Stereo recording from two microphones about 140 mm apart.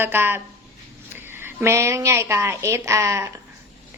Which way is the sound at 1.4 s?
20° right (ahead or behind).